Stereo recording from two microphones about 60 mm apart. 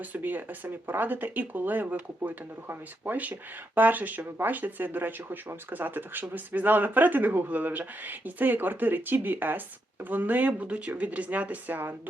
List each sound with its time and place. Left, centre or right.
0.0 s speech: right